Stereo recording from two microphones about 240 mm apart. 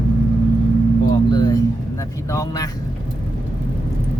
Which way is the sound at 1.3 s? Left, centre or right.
Centre.